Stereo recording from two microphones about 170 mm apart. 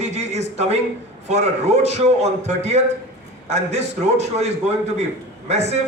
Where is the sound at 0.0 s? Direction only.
40° right (ahead or behind).